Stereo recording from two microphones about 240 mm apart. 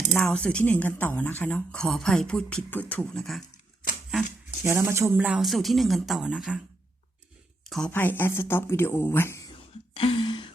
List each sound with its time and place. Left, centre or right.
0.1 s speech: centre
4.6 s speech: centre
7.6 s speech: centre
9.9 s a sound: left